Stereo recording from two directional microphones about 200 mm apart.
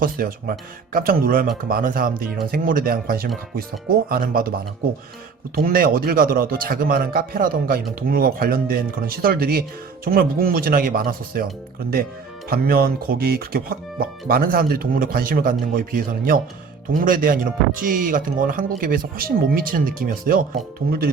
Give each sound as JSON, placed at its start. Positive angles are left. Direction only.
{"t": 0.0, "sound": "speech", "side_deg": -45}
{"t": 5.5, "sound": "speech", "side_deg": -45}
{"t": 12.5, "sound": "speech", "side_deg": -50}